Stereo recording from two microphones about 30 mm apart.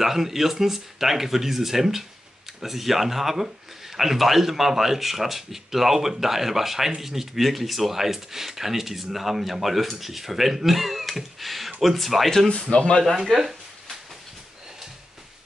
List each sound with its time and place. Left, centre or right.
0.0 s speech: centre
12.7 s speech: left
13.3 s a sound: centre